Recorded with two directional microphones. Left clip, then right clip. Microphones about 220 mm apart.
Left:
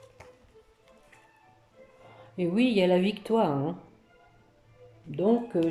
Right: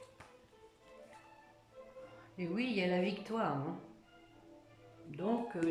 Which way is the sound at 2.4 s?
35° left (ahead or behind).